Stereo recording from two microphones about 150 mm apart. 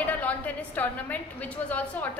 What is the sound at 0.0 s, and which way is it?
A woman's voice, 10° left (ahead or behind).